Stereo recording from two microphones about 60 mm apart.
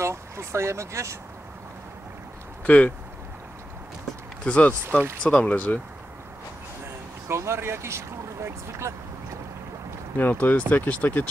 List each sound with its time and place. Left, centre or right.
0.0 s speech: right
2.6 s speech: left
4.5 s speech: left
7.2 s speech: right
10.1 s speech: left